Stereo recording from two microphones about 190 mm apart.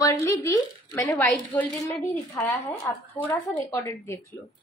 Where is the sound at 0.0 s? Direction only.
15° left (ahead or behind).